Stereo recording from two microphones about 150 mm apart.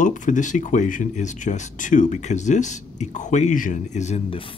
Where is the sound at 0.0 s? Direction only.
60° left (ahead or behind).